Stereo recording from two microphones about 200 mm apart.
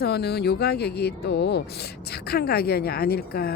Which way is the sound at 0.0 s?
55° left (ahead or behind).